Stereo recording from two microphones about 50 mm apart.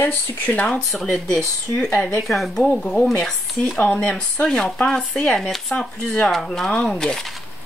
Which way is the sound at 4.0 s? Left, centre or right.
Left.